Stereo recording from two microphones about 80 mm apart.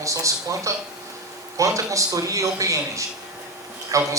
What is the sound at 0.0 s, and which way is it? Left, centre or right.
Speech, right.